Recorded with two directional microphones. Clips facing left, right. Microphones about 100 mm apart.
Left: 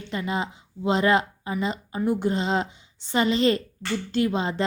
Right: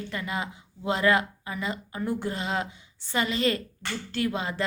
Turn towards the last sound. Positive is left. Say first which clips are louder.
# left 5 dB
turn(degrees=25)  # may be behind; listen again after turning